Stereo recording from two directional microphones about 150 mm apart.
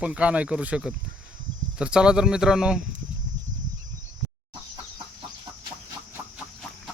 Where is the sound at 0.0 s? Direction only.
10° right (ahead or behind).